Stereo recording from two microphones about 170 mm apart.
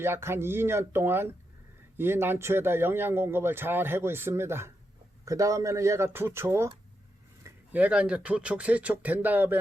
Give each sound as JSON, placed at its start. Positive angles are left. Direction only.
{"t": 0.0, "sound": "a man's voice", "side_deg": -15}